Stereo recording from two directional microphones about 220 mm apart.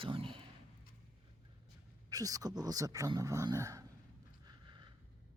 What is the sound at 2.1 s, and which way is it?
Speech, 15° right (ahead or behind).